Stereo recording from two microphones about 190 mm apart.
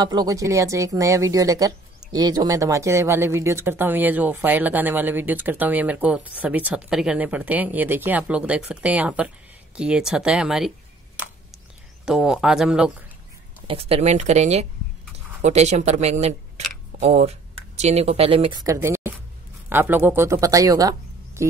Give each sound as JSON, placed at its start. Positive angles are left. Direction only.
{"t": 0.0, "sound": "speech", "side_deg": -20}
{"t": 12.1, "sound": "speech", "side_deg": -5}
{"t": 13.7, "sound": "speech", "side_deg": -30}
{"t": 21.4, "sound": "music", "side_deg": -15}